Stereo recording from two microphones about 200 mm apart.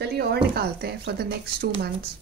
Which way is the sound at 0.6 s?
50° right (ahead or behind).